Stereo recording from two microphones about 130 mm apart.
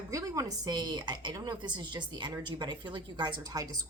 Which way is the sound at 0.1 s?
25° right (ahead or behind).